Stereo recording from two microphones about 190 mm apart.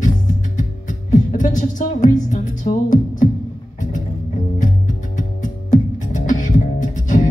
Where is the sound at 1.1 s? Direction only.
40° left (ahead or behind).